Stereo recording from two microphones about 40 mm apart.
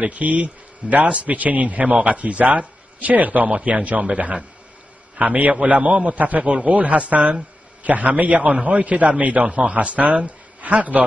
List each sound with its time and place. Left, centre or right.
0.0 s a man's voice: right
5.5 s a man's voice: right